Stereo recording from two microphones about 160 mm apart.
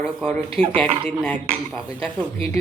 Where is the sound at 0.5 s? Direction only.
35° right (ahead or behind).